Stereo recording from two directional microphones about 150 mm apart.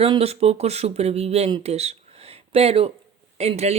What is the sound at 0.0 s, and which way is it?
Speech, 40° right (ahead or behind).